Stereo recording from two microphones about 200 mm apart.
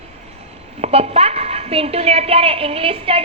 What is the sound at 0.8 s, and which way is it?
A woman's voice, 30° right (ahead or behind).